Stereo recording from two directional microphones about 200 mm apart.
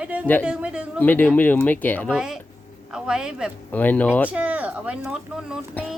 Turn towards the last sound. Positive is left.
turn(degrees=-5)  # may be behind; listen again after turning